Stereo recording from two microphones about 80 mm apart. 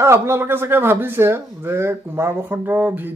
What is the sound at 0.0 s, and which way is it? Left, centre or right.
Speech, right.